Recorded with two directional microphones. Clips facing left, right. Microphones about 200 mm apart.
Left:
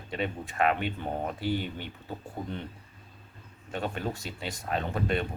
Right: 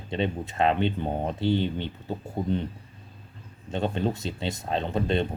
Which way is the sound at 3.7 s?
25° right (ahead or behind).